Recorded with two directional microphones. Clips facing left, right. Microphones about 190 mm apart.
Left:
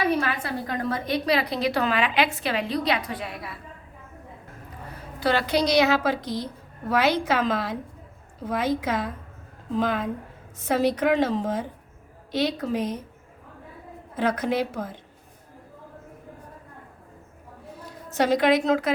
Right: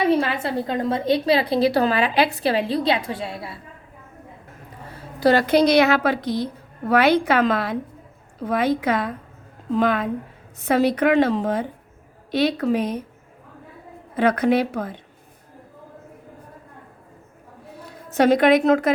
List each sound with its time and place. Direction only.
0.0 s a woman's voice: 25° right (ahead or behind)
5.2 s a woman's voice: 45° right (ahead or behind); by 13.0 s 60° right (ahead or behind)
14.2 s a woman's voice: 65° right (ahead or behind)
18.1 s a woman's voice: 55° right (ahead or behind)